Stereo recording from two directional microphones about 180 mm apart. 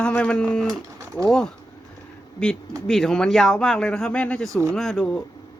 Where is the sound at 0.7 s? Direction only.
15° right (ahead or behind).